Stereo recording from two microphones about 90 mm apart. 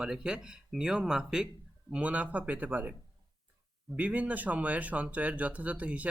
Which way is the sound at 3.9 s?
15° right (ahead or behind).